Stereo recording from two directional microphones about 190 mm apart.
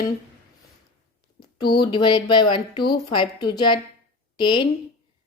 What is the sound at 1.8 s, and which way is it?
A woman's voice, 25° left (ahead or behind).